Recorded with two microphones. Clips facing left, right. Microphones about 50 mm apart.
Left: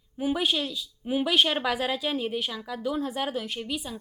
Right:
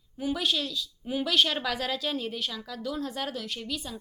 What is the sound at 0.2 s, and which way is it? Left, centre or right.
Speech, centre.